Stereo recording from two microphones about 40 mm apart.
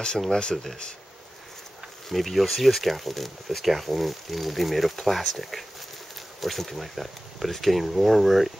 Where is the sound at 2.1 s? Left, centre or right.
Centre.